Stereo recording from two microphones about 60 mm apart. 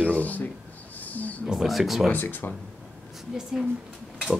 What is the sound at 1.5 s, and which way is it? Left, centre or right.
Speech, centre.